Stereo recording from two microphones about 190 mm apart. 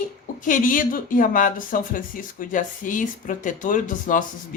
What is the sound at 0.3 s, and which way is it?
Speech, 45° left (ahead or behind).